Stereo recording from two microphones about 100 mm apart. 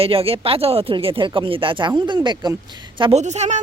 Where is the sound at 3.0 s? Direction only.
75° right (ahead or behind).